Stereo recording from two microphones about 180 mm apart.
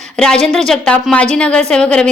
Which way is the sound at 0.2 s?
5° left (ahead or behind).